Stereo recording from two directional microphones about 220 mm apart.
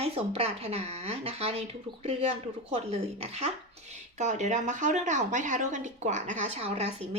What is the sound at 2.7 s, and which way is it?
Speech, 30° right (ahead or behind).